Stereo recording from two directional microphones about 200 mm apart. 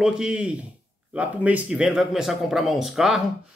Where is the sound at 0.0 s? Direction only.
5° right (ahead or behind).